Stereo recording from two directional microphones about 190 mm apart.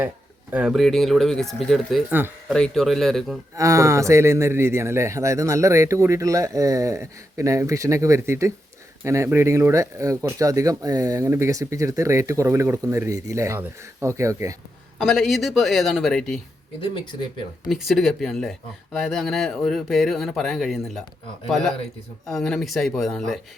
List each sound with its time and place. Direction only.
0.5 s speech: 5° right (ahead or behind)
3.5 s speech: 15° right (ahead or behind)
14.9 s speech: centre (ahead or behind)
16.8 s speech: 25° left (ahead or behind)
17.7 s speech: centre (ahead or behind)